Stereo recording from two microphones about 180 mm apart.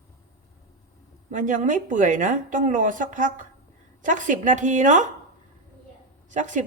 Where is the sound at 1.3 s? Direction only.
45° right (ahead or behind).